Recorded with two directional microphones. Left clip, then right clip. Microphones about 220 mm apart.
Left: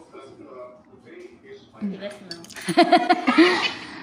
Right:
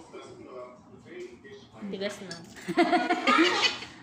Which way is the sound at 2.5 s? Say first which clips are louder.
Left 8 dB; 45° left (ahead or behind).